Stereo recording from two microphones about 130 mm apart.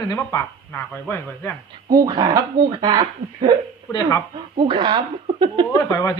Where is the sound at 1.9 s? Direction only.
30° right (ahead or behind).